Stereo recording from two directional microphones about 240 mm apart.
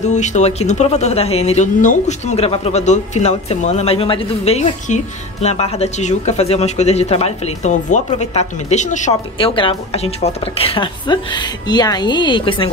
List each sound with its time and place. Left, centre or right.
0.0 s speech: left